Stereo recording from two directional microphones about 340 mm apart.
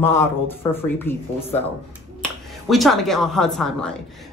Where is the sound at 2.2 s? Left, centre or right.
Centre.